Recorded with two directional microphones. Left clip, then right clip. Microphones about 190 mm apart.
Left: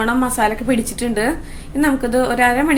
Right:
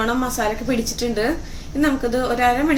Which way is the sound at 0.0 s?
40° left (ahead or behind).